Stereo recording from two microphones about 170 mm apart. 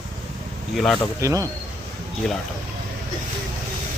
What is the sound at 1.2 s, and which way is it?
Speech, 20° right (ahead or behind).